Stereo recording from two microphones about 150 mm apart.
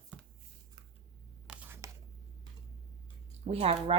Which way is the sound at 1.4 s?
15° right (ahead or behind).